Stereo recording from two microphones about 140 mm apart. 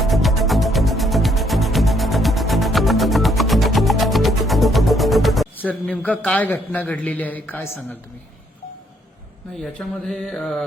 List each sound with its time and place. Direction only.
0.0 s music: centre (ahead or behind)
5.5 s a man's voice: 10° left (ahead or behind)
9.6 s mantra: 5° left (ahead or behind)